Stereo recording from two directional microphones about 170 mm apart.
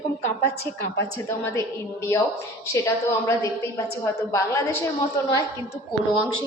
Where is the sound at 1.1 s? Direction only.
15° left (ahead or behind).